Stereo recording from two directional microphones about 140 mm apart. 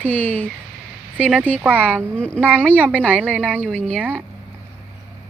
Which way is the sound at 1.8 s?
10° left (ahead or behind).